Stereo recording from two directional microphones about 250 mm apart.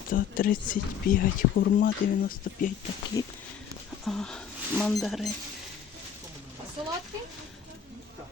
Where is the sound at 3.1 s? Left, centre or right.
Centre.